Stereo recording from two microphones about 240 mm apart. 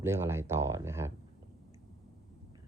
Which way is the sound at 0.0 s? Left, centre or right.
Centre.